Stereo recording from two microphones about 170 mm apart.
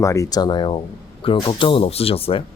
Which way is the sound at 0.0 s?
20° left (ahead or behind).